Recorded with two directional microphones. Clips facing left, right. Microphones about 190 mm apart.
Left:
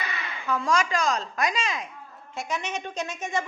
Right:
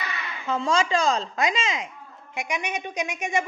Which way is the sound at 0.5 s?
25° right (ahead or behind).